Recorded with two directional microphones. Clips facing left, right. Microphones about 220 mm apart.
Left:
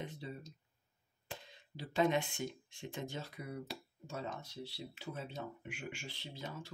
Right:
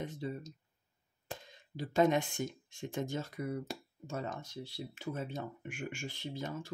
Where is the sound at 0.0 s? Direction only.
45° right (ahead or behind).